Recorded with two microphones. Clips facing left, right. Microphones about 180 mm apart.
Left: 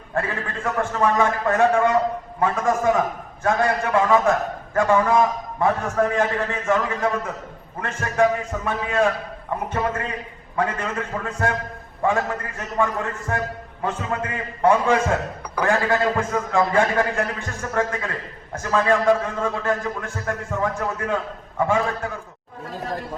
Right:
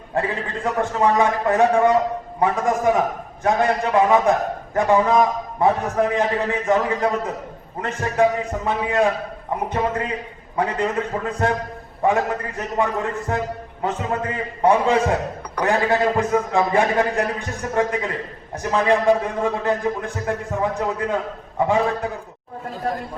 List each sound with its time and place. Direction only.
0.1 s a man's voice: 15° right (ahead or behind)